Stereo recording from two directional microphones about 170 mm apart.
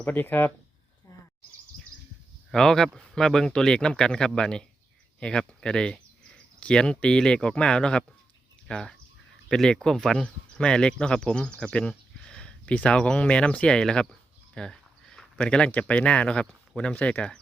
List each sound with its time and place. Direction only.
0.0 s speech: 10° left (ahead or behind)
1.1 s bird: 20° left (ahead or behind)
2.5 s speech: 5° left (ahead or behind)